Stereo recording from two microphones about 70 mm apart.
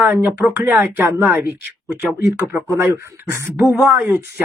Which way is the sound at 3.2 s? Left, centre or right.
Right.